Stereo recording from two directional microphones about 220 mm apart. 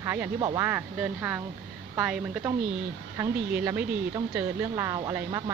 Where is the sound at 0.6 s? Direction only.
10° right (ahead or behind).